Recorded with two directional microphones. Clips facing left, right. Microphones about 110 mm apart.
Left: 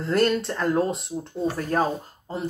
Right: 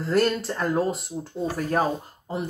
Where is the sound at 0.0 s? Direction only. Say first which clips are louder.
Left 1 dB; centre (ahead or behind).